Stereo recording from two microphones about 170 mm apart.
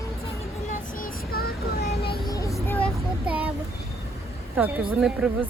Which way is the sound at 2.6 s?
10° left (ahead or behind).